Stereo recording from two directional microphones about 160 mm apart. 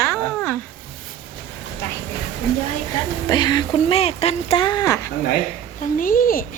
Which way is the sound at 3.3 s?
25° left (ahead or behind).